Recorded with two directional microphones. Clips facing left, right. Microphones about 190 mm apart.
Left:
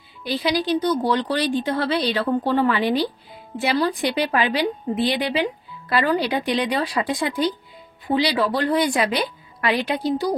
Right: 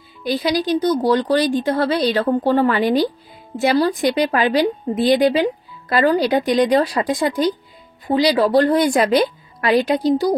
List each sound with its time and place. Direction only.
0.2 s a woman's voice: 45° right (ahead or behind)